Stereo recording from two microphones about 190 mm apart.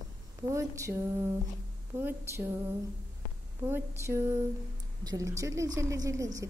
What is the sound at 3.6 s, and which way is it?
Speech, 10° right (ahead or behind).